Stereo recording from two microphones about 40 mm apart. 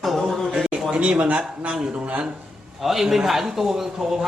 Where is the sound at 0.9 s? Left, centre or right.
Right.